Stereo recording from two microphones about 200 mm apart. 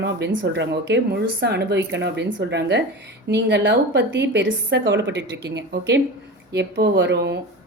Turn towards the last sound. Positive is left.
turn(degrees=-60)  # may be behind; listen again after turning